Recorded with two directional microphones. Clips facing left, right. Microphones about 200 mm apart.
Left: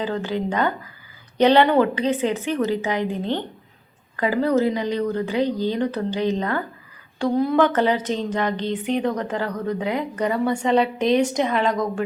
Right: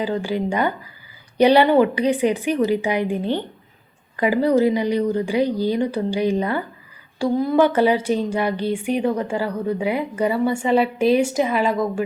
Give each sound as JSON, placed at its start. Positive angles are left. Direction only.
{"t": 0.0, "sound": "speech", "side_deg": -10}